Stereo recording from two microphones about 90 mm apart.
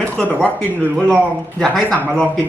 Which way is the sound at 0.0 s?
5° left (ahead or behind).